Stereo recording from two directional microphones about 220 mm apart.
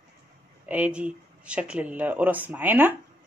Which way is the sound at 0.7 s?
5° right (ahead or behind).